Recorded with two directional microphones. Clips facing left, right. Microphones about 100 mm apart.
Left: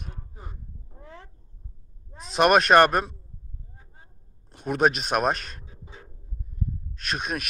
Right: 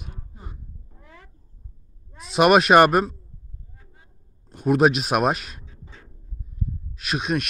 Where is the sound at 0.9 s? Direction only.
30° left (ahead or behind).